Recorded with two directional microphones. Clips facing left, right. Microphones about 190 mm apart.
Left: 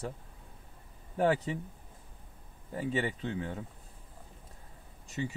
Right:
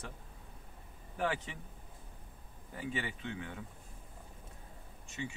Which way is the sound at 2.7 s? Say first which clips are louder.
Left 7 dB; 35° left (ahead or behind).